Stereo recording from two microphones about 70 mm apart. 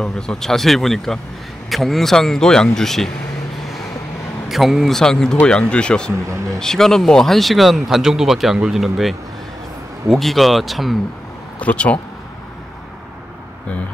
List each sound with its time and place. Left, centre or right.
0.0 s speech: centre
4.5 s speech: centre
11.6 s speech: centre